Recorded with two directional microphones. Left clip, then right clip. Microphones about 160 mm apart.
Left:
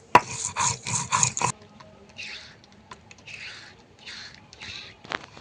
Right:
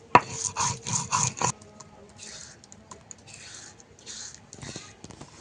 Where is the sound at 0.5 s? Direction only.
5° left (ahead or behind).